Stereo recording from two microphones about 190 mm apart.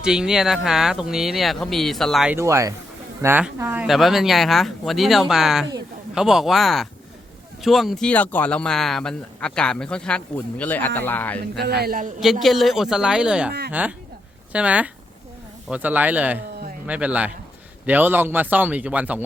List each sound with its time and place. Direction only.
0.0 s a man's voice: 5° right (ahead or behind)
2.3 s a man's voice: 15° right (ahead or behind); by 11.6 s 10° left (ahead or behind)
11.6 s a man's voice: 55° right (ahead or behind)
12.2 s a man's voice: centre (ahead or behind)